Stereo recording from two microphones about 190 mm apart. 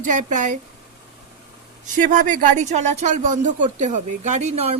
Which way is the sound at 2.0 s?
40° right (ahead or behind).